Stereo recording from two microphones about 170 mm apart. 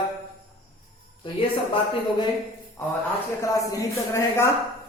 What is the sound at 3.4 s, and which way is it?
Speech, 20° left (ahead or behind).